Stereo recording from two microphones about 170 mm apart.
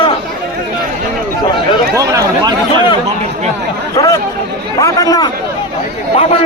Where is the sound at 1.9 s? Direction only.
20° right (ahead or behind).